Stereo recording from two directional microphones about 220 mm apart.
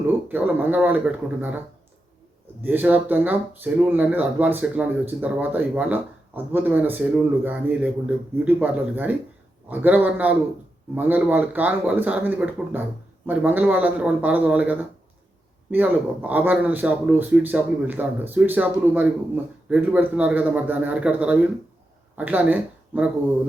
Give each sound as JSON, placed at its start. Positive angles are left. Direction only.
{"t": 0.3, "sound": "speech", "side_deg": -10}
{"t": 2.6, "sound": "speech", "side_deg": -10}